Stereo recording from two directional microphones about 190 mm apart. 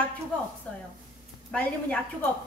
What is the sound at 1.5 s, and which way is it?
Speech, 5° left (ahead or behind).